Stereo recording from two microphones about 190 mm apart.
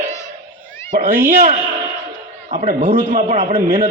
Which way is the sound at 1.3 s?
35° right (ahead or behind).